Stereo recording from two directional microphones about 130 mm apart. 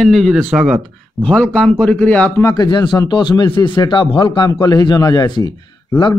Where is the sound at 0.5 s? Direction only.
10° right (ahead or behind).